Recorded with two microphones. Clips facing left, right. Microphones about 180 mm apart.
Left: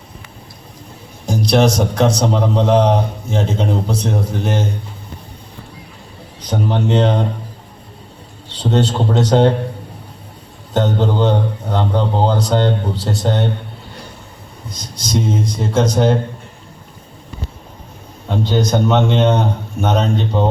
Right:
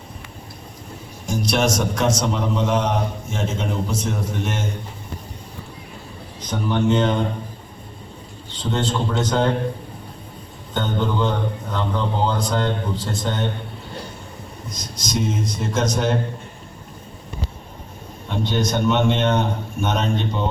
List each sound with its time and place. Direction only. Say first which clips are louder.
1.3 s a man's voice: left 6 dB; 35° left (ahead or behind)
6.5 s a man's voice: left 2 dB; 35° left (ahead or behind)
8.5 s a man's voice: left 6 dB; 35° left (ahead or behind)
10.8 s a man's voice: left 6 dB; 40° left (ahead or behind)
14.7 s a man's voice: left 5 dB; 35° left (ahead or behind)
18.3 s a man's voice: left 5 dB; 35° left (ahead or behind)